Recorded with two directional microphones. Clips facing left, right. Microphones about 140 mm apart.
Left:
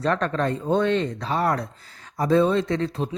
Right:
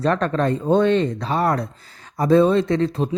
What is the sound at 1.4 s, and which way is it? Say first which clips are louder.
Speech: right 3 dB; 35° right (ahead or behind).